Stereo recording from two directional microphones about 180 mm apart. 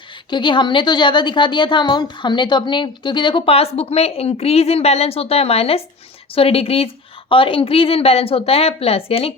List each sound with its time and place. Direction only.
0.3 s a woman's voice: 25° left (ahead or behind)